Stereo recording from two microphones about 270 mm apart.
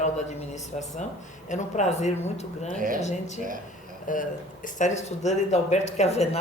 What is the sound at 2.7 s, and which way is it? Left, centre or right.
Speech, right.